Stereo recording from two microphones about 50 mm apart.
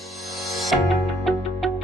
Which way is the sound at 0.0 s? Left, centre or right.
Centre.